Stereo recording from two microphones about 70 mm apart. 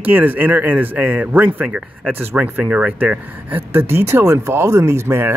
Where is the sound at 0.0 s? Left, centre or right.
Right.